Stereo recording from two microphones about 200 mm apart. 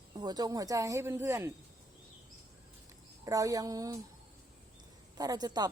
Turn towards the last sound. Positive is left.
turn(degrees=-20)  # may be behind; listen again after turning